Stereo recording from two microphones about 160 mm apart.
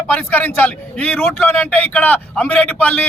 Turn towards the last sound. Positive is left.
turn(degrees=10)  # may be behind; listen again after turning